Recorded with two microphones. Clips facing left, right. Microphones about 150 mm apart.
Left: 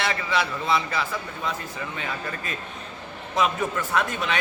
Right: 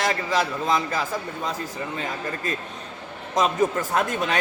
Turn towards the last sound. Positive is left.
turn(degrees=-45)  # may be behind; listen again after turning